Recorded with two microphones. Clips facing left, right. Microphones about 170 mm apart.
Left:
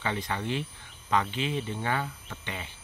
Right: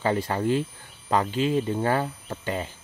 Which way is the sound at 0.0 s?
40° right (ahead or behind).